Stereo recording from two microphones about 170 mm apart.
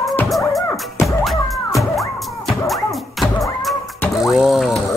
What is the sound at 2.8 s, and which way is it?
Music, 20° left (ahead or behind).